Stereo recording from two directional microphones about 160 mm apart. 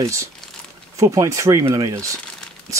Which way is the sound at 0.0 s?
20° right (ahead or behind).